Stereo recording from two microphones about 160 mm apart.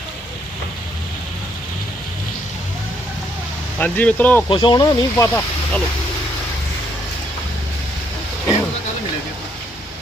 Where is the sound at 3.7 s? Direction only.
10° left (ahead or behind).